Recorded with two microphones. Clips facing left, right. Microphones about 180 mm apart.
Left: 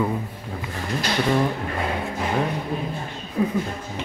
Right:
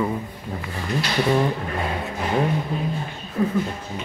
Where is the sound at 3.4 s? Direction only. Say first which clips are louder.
Even; 10° left (ahead or behind).